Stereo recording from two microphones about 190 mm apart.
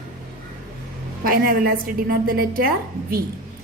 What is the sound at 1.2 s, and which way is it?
A woman's voice, 50° right (ahead or behind).